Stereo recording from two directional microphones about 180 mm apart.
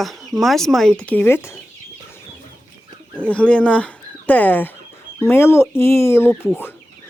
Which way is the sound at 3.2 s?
5° left (ahead or behind).